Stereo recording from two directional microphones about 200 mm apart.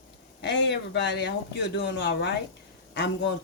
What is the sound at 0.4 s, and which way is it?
Speech, 60° left (ahead or behind).